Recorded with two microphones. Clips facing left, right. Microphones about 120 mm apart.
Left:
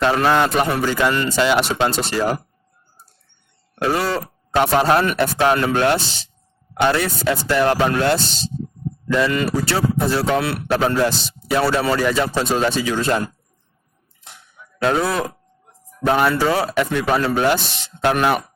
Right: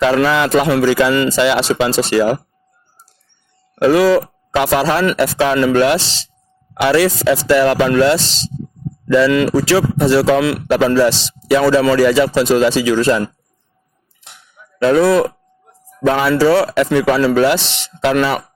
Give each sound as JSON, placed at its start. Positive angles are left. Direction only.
{"t": 0.0, "sound": "a man's voice", "side_deg": -90}
{"t": 3.9, "sound": "a man's voice", "side_deg": -90}
{"t": 16.1, "sound": "a man's voice", "side_deg": -90}